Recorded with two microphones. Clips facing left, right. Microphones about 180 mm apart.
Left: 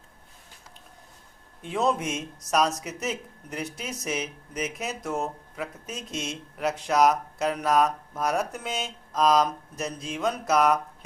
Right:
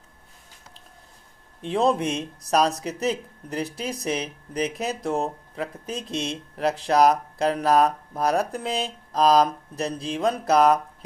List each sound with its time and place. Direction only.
1.6 s speech: 30° right (ahead or behind)